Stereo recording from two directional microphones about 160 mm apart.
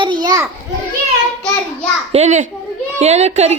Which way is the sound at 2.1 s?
45° right (ahead or behind).